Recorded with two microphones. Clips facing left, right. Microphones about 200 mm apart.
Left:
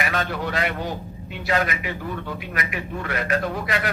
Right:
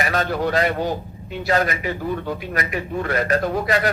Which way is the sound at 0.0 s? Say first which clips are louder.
Right 4 dB; 40° right (ahead or behind).